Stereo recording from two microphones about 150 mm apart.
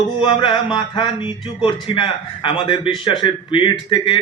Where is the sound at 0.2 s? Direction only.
35° left (ahead or behind).